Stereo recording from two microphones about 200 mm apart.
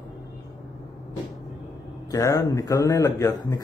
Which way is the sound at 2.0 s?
15° left (ahead or behind).